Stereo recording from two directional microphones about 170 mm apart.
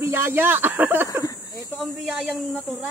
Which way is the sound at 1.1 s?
20° left (ahead or behind).